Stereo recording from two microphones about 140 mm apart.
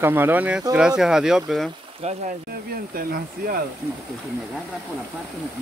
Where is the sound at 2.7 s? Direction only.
90° right.